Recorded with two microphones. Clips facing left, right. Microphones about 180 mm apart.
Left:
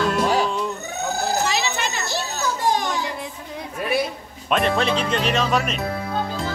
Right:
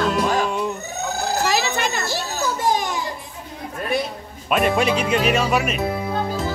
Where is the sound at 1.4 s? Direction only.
50° right (ahead or behind).